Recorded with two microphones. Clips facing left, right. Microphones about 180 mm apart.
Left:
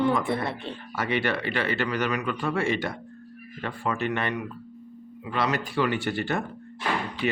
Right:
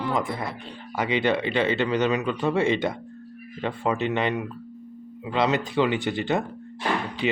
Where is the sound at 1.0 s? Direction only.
15° right (ahead or behind).